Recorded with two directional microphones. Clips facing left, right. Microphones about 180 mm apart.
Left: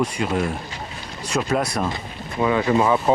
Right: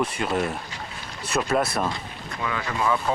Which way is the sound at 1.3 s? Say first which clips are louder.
Left 2 dB; 40° left (ahead or behind).